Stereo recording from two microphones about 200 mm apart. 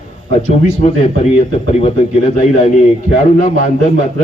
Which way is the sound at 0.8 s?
35° left (ahead or behind).